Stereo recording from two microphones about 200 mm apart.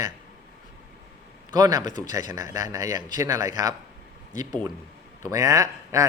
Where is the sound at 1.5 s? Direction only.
20° right (ahead or behind).